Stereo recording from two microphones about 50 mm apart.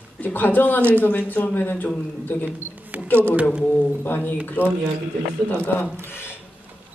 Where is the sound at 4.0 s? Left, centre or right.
Left.